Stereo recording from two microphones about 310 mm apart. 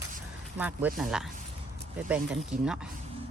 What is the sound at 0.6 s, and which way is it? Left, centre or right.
Speech, centre.